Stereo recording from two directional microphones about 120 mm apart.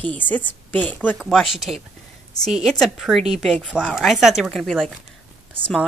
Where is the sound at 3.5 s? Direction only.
10° left (ahead or behind).